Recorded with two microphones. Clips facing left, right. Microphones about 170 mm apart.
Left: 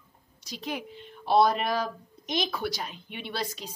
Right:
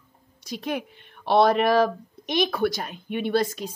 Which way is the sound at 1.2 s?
70° right (ahead or behind).